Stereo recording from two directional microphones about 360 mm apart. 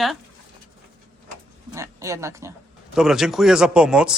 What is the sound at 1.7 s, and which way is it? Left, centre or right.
Speech, centre.